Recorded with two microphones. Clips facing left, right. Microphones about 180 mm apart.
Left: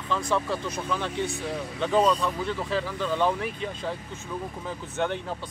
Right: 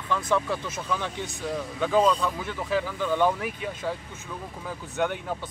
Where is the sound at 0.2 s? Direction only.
20° right (ahead or behind).